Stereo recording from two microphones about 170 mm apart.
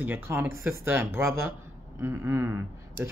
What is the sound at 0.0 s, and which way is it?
Speech, 10° right (ahead or behind).